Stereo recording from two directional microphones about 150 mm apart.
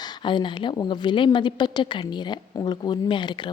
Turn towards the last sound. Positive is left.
turn(degrees=30)  # may be behind; listen again after turning